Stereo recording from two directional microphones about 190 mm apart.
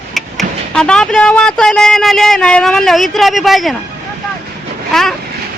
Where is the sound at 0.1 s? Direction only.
Centre (ahead or behind).